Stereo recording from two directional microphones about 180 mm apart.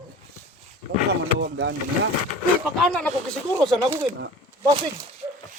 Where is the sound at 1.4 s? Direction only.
90° right.